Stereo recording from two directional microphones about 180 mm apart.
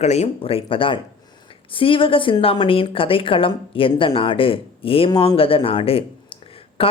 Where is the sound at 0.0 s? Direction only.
40° left (ahead or behind).